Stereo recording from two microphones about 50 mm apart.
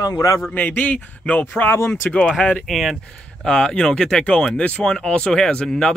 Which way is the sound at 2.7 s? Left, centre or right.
Centre.